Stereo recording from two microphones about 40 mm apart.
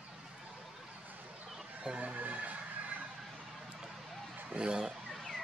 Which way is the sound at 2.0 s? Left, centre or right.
Right.